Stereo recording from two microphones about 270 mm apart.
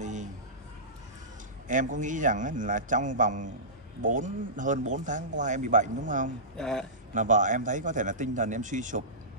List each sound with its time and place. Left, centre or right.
0.0 s a sound: right
1.7 s a man's voice: right
6.5 s speech: centre
7.2 s a man's voice: right